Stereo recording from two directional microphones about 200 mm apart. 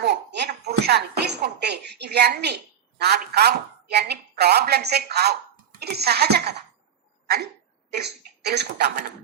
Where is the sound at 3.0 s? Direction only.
55° right (ahead or behind).